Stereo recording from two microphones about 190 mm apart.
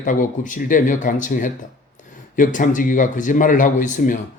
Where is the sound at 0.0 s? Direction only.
40° left (ahead or behind).